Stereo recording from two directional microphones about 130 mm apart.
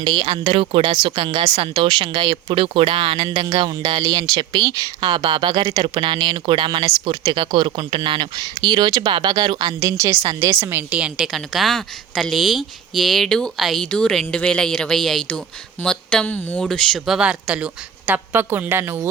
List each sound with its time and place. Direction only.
0.0 s speech: 40° right (ahead or behind); by 19.0 s 15° right (ahead or behind)